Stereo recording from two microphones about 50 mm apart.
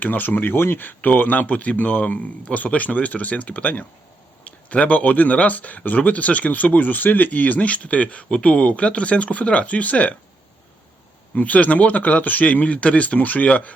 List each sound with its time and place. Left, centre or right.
0.0 s speech: left
11.3 s speech: left